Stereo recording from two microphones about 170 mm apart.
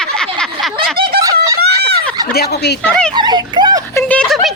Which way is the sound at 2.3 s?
70° left (ahead or behind).